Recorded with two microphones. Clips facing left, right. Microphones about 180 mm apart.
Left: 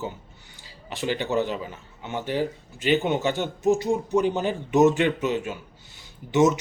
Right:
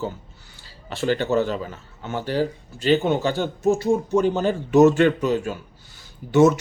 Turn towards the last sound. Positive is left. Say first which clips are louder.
# right 4 dB
turn(degrees=20)  # may be behind; listen again after turning